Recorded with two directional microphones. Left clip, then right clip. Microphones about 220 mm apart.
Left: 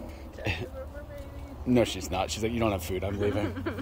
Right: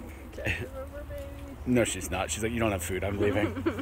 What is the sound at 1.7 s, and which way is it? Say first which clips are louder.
Speech: left 1 dB; centre (ahead or behind).